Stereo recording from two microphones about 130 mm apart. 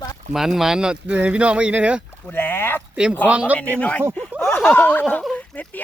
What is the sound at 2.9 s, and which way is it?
Speech, 10° right (ahead or behind).